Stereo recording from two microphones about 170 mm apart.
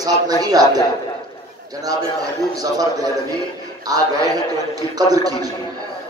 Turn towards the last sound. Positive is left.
turn(degrees=-20)  # may be behind; listen again after turning